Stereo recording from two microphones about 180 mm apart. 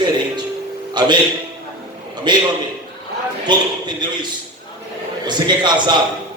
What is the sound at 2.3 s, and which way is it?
Speech, 25° right (ahead or behind).